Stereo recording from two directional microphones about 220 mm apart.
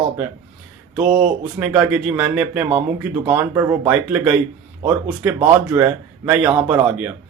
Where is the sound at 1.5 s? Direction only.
10° right (ahead or behind).